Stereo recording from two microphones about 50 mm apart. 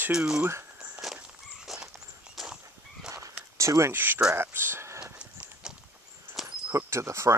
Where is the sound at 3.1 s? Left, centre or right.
Right.